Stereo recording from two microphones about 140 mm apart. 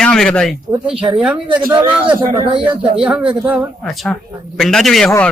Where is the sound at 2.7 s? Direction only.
35° right (ahead or behind).